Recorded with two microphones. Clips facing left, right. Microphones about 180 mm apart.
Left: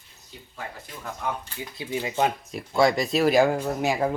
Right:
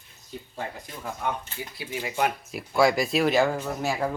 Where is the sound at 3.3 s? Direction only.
15° left (ahead or behind).